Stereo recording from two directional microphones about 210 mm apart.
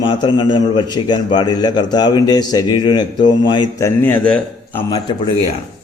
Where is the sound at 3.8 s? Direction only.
10° left (ahead or behind).